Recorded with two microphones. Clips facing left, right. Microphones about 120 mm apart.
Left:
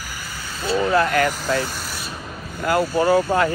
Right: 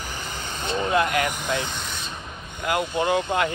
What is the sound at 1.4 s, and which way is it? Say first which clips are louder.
Speech: left 4 dB; 20° right (ahead or behind).